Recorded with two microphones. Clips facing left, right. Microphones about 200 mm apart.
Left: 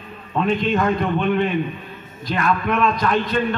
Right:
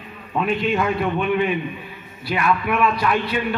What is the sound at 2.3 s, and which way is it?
A man's voice, 10° right (ahead or behind).